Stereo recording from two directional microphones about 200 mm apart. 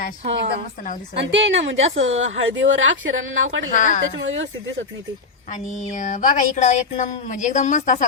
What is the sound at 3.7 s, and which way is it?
Speech, 40° left (ahead or behind).